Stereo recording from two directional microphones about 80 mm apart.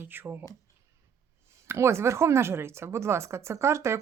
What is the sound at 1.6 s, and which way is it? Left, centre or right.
Speech, right.